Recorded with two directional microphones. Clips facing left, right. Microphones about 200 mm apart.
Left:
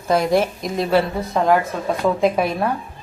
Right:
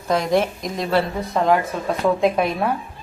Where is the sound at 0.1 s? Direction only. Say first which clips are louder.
Left 2 dB; 5° left (ahead or behind).